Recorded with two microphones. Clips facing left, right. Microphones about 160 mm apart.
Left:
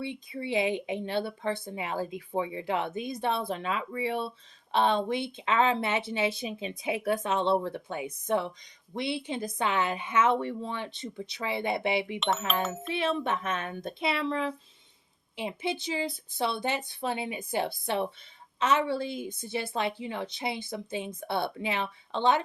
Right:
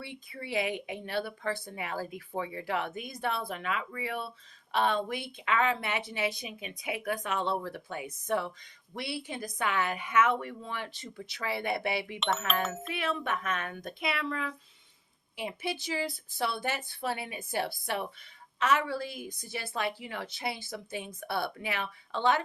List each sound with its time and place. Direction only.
0.0 s a woman's voice: 20° left (ahead or behind)
12.6 s speech: centre (ahead or behind)
12.9 s a woman's voice: 25° left (ahead or behind)